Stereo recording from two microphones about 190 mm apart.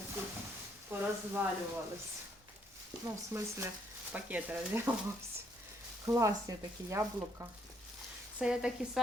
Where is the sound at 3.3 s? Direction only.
15° right (ahead or behind).